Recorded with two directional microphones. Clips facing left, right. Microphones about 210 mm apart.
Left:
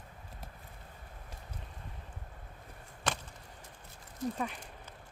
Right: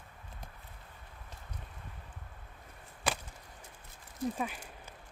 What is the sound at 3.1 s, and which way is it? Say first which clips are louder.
Chop: right 1 dB; 10° right (ahead or behind).